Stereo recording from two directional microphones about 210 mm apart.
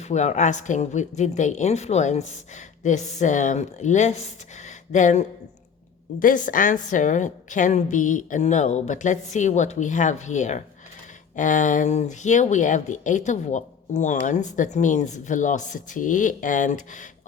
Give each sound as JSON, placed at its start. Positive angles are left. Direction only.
{"t": 0.0, "sound": "speech", "side_deg": 35}